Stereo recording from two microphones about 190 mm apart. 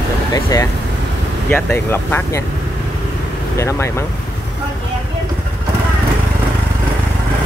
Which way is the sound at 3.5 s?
15° left (ahead or behind).